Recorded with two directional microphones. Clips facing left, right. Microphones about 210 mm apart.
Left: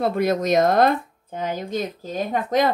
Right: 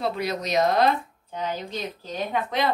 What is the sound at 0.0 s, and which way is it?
Speech, 50° left (ahead or behind).